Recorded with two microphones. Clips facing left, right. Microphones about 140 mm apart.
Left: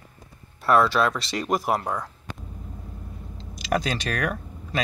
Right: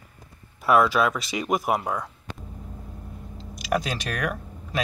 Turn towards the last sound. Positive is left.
turn(degrees=-5)  # may be behind; listen again after turning